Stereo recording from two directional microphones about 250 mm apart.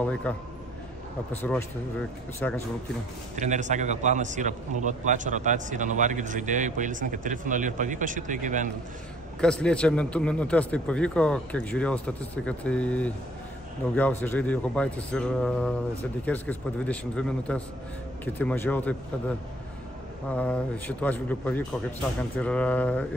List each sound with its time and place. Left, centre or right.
0.0 s a man's voice: centre
3.3 s a man's voice: right
9.4 s a man's voice: centre
20.3 s a man's voice: centre